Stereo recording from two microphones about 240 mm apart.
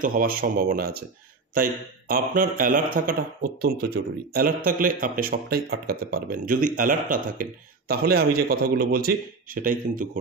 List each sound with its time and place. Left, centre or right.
0.0 s speech: right